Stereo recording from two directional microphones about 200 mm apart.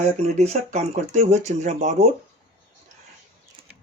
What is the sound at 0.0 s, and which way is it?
Speech, 35° right (ahead or behind).